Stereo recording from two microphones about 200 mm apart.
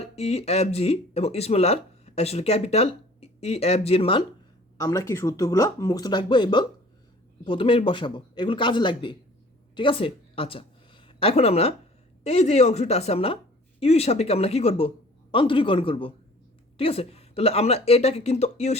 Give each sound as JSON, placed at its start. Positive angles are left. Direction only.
{"t": 0.0, "sound": "a man's voice", "side_deg": 30}